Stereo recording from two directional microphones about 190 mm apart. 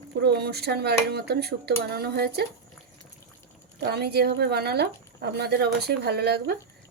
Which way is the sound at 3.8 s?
60° right (ahead or behind).